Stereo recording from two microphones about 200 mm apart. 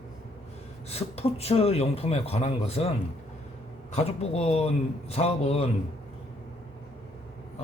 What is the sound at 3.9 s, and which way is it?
A man's voice, 30° left (ahead or behind).